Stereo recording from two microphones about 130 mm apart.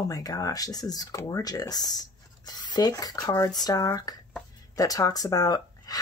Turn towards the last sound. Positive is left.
turn(degrees=30)  # may be behind; listen again after turning